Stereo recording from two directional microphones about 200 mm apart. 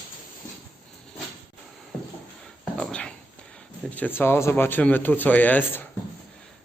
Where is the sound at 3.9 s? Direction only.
10° left (ahead or behind).